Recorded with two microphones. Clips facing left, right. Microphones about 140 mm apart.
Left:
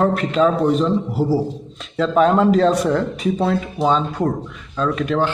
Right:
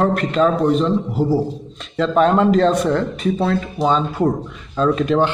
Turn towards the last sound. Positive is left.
turn(degrees=-25)  # may be behind; listen again after turning